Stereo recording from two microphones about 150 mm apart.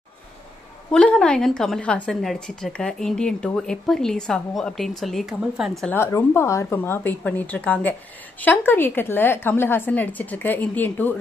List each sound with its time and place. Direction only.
0.9 s a woman's voice: 5° left (ahead or behind)
5.9 s a woman's voice: 15° left (ahead or behind)